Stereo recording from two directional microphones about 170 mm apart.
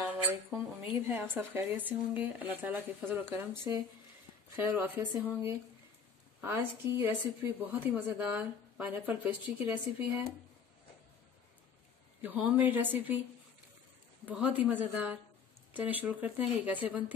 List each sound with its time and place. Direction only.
0.0 s a woman's voice: 5° right (ahead or behind)
12.2 s a woman's voice: 10° right (ahead or behind)
14.2 s a woman's voice: 10° right (ahead or behind)